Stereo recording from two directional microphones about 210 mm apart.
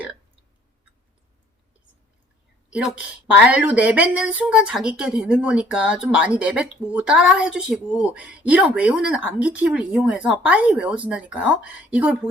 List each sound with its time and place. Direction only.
2.6 s speech: 5° right (ahead or behind)